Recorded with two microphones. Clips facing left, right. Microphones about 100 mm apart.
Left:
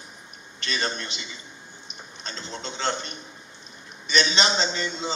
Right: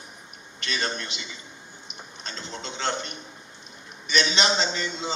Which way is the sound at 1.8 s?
35° left (ahead or behind).